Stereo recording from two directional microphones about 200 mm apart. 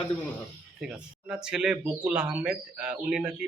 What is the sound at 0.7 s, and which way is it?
Speech, 5° right (ahead or behind).